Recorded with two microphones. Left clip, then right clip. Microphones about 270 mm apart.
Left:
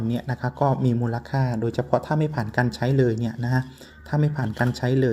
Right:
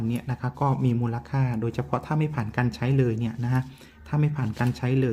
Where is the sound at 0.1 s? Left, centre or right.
Centre.